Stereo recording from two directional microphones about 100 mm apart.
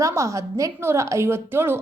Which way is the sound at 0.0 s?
30° right (ahead or behind).